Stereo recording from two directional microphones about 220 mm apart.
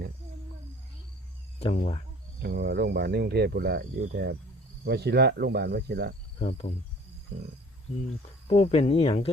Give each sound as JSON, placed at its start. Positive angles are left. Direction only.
{"t": 1.5, "sound": "speech", "side_deg": 30}
{"t": 2.4, "sound": "speech", "side_deg": -50}
{"t": 6.4, "sound": "speech", "side_deg": 30}
{"t": 8.4, "sound": "speech", "side_deg": 30}